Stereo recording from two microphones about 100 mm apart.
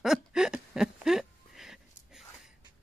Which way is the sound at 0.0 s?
5° right (ahead or behind).